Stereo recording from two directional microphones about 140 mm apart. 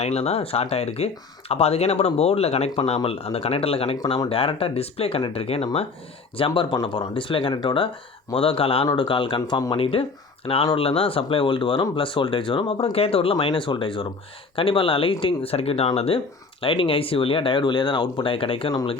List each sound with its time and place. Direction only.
0.0 s speech: 50° left (ahead or behind)